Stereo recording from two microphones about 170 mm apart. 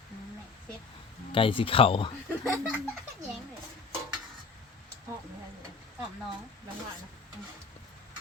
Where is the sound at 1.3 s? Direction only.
30° left (ahead or behind).